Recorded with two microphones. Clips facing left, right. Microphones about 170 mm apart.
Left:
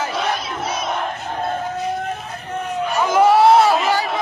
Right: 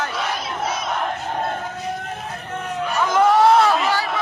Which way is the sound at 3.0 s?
10° left (ahead or behind).